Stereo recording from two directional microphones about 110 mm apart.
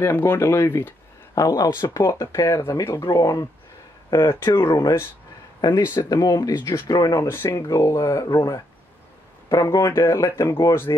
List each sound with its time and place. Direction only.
0.0 s speech: 20° left (ahead or behind)